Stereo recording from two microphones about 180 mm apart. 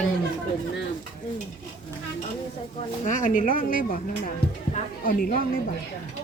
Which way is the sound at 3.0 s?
45° left (ahead or behind).